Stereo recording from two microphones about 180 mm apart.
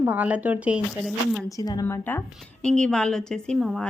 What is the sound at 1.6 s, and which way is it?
A woman's voice, 20° left (ahead or behind).